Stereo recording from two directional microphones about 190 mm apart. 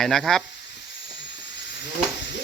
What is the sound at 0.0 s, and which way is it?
Speech, centre (ahead or behind).